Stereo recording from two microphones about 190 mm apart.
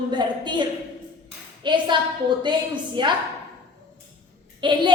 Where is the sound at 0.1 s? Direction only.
25° right (ahead or behind).